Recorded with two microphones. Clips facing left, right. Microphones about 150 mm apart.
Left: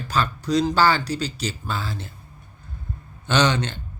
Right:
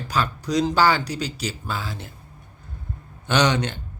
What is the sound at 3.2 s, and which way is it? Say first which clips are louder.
Speech: even; 15° right (ahead or behind).